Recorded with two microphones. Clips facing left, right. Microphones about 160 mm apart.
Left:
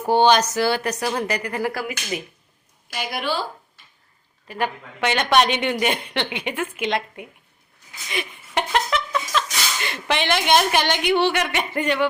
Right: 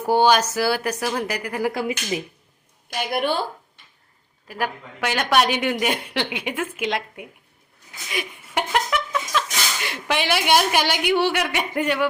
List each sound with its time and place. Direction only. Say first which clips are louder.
0.1 s a woman's voice: left 1 dB; 10° right (ahead or behind)
1.7 s speech: right 3 dB; 25° right (ahead or behind)
3.1 s a woman's voice: right 4 dB; 55° right (ahead or behind)
4.4 s a woman's voice: left 1 dB; 5° right (ahead or behind)
8.1 s a sound: left 1 dB; 10° right (ahead or behind)
9.8 s a woman's voice: left 1 dB; 10° right (ahead or behind)